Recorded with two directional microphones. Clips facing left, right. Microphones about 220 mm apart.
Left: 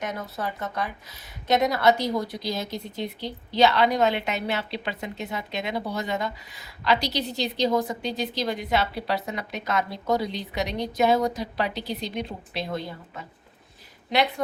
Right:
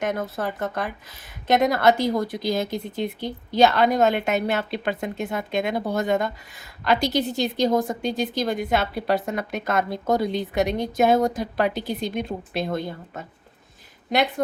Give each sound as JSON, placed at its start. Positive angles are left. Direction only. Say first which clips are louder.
{"t": 0.0, "sound": "a woman's voice", "louder": "right 5 dB", "side_deg": -50}